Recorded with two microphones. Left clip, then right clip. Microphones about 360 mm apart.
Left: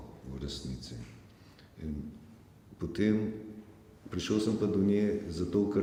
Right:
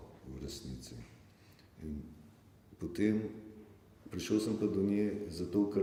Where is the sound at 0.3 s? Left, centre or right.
Left.